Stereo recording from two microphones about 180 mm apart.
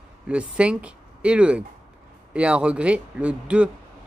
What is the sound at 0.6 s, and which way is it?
A man's voice, 5° right (ahead or behind).